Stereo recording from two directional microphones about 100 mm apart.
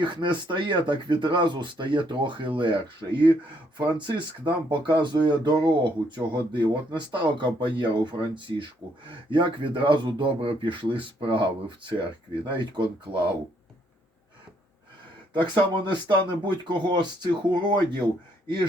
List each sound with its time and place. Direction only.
0.0 s speech: 50° right (ahead or behind)
15.3 s speech: 50° right (ahead or behind)